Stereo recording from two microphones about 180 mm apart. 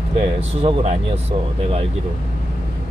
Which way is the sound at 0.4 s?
30° right (ahead or behind).